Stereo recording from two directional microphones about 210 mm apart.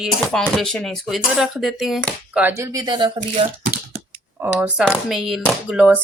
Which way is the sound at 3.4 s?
40° right (ahead or behind).